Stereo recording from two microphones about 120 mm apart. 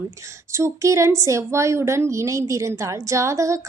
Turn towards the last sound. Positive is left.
turn(degrees=-25)  # may be behind; listen again after turning